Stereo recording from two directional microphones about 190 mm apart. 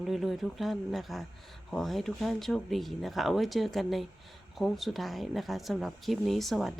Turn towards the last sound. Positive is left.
turn(degrees=0)  # may be behind; listen again after turning